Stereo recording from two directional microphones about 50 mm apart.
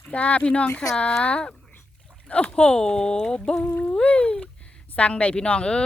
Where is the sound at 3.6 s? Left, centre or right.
Left.